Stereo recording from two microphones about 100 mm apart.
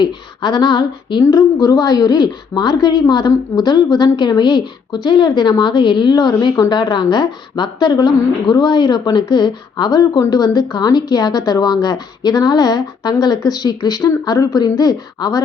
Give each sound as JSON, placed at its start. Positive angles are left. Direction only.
{"t": 0.0, "sound": "a woman's voice", "side_deg": 50}